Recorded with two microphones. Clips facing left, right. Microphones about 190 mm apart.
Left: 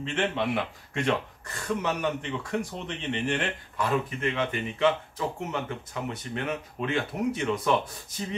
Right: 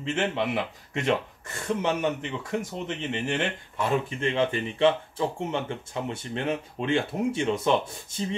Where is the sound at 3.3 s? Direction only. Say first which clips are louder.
Right 1 dB; 25° right (ahead or behind).